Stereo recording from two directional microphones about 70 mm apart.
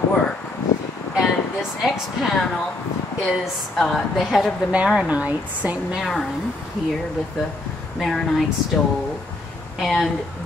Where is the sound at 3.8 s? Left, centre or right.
Centre.